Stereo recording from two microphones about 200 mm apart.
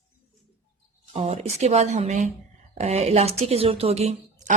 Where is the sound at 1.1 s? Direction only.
30° right (ahead or behind).